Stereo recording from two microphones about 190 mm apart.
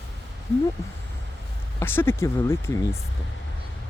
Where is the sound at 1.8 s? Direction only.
10° left (ahead or behind).